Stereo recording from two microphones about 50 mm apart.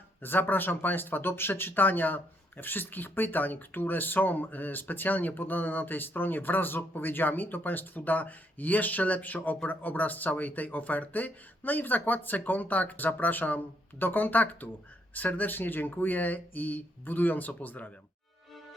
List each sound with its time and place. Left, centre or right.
0.2 s speech: left